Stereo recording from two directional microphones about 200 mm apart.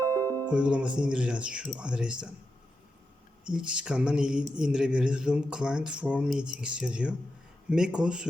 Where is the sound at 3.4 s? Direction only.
5° right (ahead or behind).